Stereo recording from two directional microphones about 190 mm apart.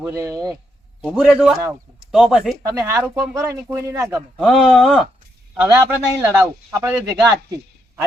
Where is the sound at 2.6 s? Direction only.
15° right (ahead or behind).